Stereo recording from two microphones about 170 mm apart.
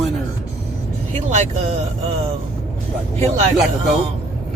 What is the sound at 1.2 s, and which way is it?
Speech, 40° right (ahead or behind).